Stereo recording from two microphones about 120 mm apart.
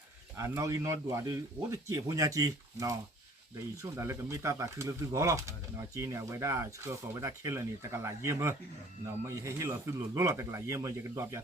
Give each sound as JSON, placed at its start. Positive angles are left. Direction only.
{"t": 0.3, "sound": "speech", "side_deg": -25}